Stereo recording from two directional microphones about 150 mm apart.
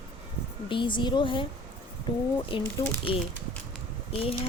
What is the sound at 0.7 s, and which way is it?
Speech, 35° left (ahead or behind).